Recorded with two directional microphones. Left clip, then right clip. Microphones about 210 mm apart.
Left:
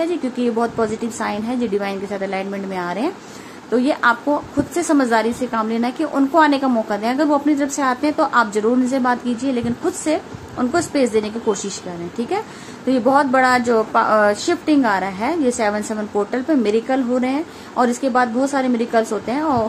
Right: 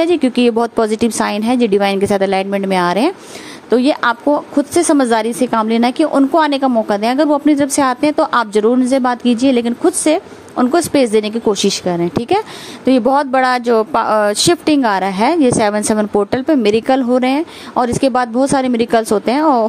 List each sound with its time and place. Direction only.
0.0 s a woman's voice: 45° right (ahead or behind)